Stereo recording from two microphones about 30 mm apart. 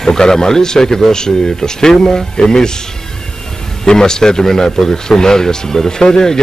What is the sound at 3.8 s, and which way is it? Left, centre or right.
A man's voice, left.